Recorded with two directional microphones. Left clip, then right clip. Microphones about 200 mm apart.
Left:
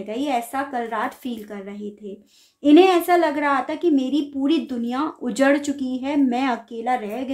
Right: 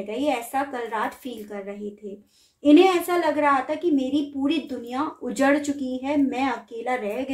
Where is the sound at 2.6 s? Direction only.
35° left (ahead or behind).